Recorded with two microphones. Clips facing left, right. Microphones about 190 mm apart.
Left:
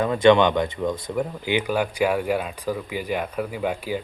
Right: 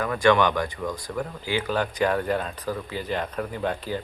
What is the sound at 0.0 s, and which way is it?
Speech, 20° left (ahead or behind).